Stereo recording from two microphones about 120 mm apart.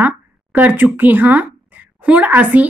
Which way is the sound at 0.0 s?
15° right (ahead or behind).